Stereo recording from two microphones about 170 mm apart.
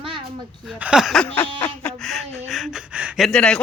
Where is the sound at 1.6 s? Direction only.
10° left (ahead or behind).